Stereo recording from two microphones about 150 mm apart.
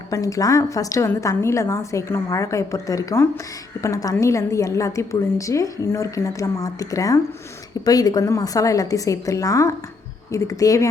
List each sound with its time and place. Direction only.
0.1 s a woman's voice: 20° left (ahead or behind)